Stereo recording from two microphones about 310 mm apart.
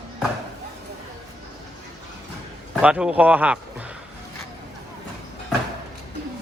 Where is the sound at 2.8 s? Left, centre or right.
Centre.